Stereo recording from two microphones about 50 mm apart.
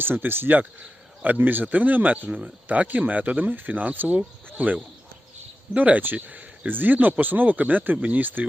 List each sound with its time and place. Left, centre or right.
0.0 s speech: right